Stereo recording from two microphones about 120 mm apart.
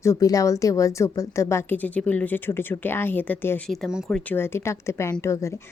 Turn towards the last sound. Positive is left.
turn(degrees=25)  # may be behind; listen again after turning